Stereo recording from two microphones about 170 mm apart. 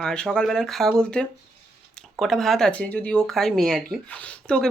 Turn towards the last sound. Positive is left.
turn(degrees=5)  # may be behind; listen again after turning